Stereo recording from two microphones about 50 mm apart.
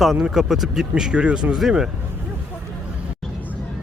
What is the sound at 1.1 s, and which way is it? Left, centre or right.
Speech, right.